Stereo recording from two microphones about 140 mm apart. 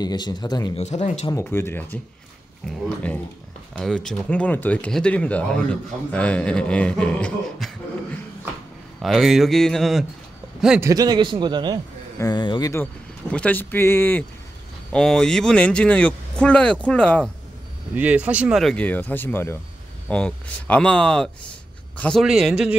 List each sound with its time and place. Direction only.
0.0 s a man's voice: 30° left (ahead or behind)
0.7 s speech: 55° left (ahead or behind)
1.3 s speech: 15° left (ahead or behind)
2.6 s speech: centre (ahead or behind)
9.0 s speech: centre (ahead or behind)
10.8 s a man's voice: 25° right (ahead or behind)
12.2 s speech: 30° left (ahead or behind)
13.3 s speech: 10° left (ahead or behind)
14.9 s speech: 5° left (ahead or behind)
17.9 s speech: 10° right (ahead or behind)
18.6 s a man's voice: 5° left (ahead or behind)
22.2 s speech: 5° right (ahead or behind)